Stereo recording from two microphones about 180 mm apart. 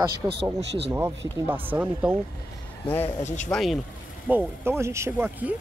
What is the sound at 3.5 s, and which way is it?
Speech, centre (ahead or behind).